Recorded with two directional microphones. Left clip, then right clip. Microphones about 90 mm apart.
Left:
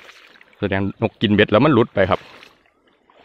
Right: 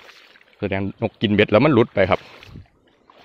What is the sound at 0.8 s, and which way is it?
Speech, 40° left (ahead or behind).